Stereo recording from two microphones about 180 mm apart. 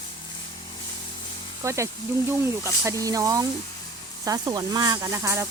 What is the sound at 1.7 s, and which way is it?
Speech, 15° right (ahead or behind).